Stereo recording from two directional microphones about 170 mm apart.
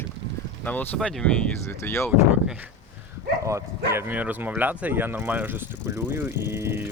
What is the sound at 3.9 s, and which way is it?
Speech, 10° right (ahead or behind).